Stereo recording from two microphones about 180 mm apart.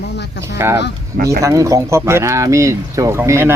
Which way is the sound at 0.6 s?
15° right (ahead or behind).